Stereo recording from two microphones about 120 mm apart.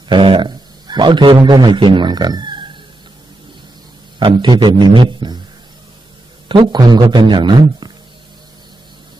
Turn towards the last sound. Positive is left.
turn(degrees=-40)  # may be behind; listen again after turning